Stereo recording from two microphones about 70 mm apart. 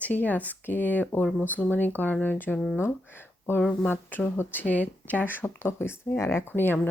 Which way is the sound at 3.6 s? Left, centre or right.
Centre.